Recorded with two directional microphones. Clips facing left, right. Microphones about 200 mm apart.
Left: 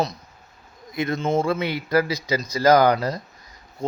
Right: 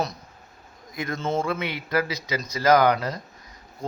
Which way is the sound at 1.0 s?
20° left (ahead or behind).